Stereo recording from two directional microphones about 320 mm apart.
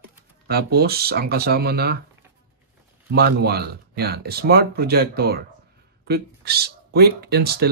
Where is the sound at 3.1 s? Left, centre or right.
Right.